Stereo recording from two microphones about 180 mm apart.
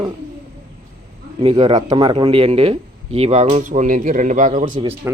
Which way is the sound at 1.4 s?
30° right (ahead or behind).